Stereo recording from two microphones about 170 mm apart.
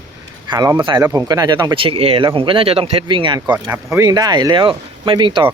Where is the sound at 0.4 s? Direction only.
25° right (ahead or behind).